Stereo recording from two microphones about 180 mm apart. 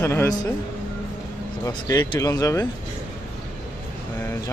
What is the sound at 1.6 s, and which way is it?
A man's voice, 20° left (ahead or behind).